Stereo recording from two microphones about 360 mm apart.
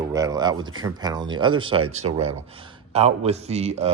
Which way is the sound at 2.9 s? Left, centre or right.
Centre.